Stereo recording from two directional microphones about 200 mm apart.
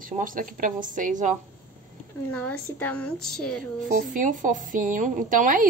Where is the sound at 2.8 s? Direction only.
5° left (ahead or behind).